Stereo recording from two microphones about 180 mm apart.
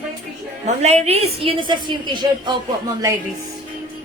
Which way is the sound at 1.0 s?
35° right (ahead or behind).